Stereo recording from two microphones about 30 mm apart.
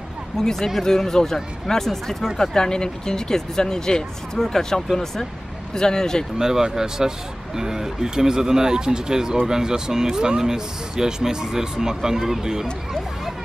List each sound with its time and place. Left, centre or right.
0.4 s speech: centre
6.3 s speech: right